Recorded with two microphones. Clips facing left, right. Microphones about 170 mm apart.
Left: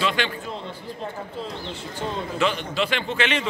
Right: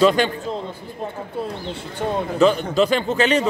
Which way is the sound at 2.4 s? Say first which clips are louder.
Right 8 dB; 40° right (ahead or behind).